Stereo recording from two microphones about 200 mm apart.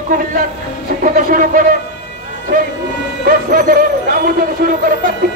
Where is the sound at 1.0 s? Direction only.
45° right (ahead or behind).